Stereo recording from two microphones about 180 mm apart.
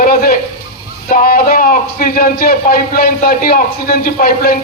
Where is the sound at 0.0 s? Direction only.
55° left (ahead or behind).